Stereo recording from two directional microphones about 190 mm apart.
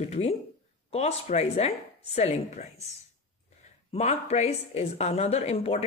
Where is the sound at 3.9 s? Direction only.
35° left (ahead or behind).